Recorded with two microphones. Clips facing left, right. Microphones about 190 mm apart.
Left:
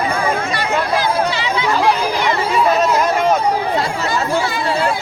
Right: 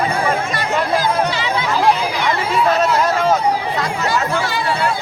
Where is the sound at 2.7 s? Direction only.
15° left (ahead or behind).